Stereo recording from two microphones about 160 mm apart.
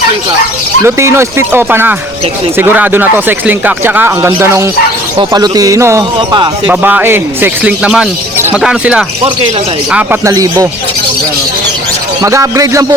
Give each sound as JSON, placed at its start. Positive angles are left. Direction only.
{"t": 0.9, "sound": "speech", "side_deg": -15}
{"t": 6.7, "sound": "speech", "side_deg": -10}
{"t": 9.9, "sound": "speech", "side_deg": -15}
{"t": 12.2, "sound": "speech", "side_deg": -20}